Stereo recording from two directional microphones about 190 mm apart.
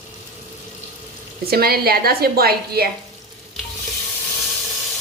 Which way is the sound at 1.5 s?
55° right (ahead or behind).